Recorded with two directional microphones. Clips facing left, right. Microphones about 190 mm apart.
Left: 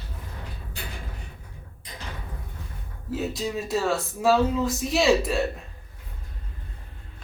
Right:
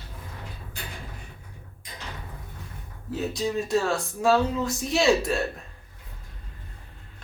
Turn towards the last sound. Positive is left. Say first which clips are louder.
# left 1 dB
turn(degrees=0)  # may be behind; listen again after turning